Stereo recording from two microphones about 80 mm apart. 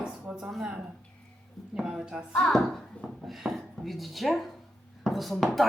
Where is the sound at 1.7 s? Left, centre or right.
Centre.